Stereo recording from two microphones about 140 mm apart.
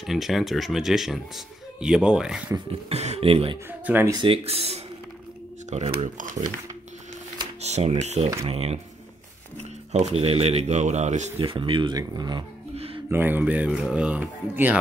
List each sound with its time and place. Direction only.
0.0 s speech: centre (ahead or behind)
2.9 s speech: 50° right (ahead or behind)
3.8 s speech: 15° right (ahead or behind)
4.1 s speech: 40° right (ahead or behind); by 6.2 s 55° right (ahead or behind)
7.6 s speech: 50° right (ahead or behind)
11.3 s speech: 40° right (ahead or behind)
12.7 s music: 45° right (ahead or behind)
13.1 s speech: 15° right (ahead or behind)